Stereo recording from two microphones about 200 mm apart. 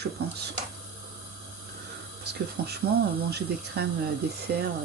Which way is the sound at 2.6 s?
50° right (ahead or behind).